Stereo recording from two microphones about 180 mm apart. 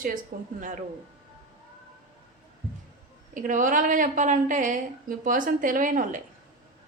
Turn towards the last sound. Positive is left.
turn(degrees=-50)  # may be behind; listen again after turning